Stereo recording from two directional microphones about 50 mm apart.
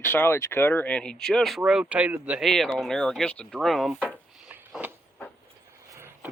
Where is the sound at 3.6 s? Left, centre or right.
Centre.